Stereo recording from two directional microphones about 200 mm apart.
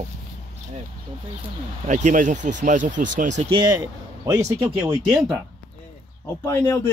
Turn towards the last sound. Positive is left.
turn(degrees=10)  # may be behind; listen again after turning